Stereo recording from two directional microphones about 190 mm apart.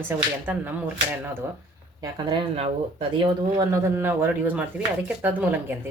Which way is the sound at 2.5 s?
30° right (ahead or behind).